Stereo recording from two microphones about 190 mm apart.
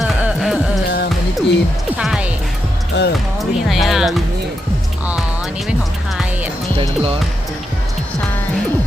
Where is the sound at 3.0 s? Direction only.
65° left (ahead or behind).